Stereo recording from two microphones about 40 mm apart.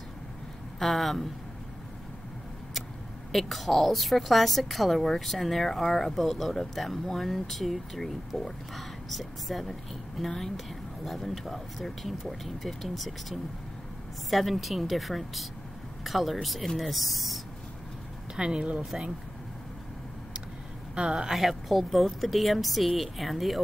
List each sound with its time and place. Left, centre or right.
0.7 s a woman's voice: centre
3.3 s a woman's voice: centre
18.3 s speech: right
20.9 s speech: right
21.3 s a woman's voice: centre